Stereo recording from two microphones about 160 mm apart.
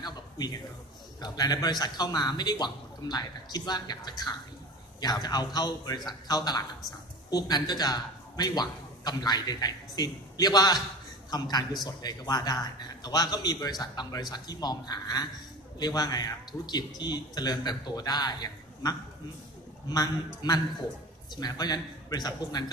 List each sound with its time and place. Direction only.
0.0 s a man's voice: 25° left (ahead or behind)
20.4 s a man's voice: 25° left (ahead or behind)